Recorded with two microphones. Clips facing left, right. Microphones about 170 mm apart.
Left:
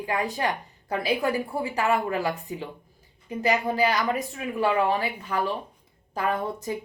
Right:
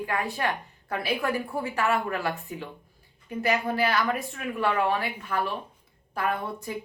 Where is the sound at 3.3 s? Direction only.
15° left (ahead or behind).